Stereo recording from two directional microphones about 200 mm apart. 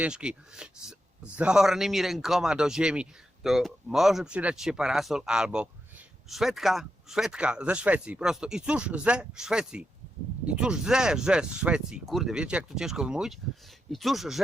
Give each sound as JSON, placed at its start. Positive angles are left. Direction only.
{"t": 0.0, "sound": "speech", "side_deg": -5}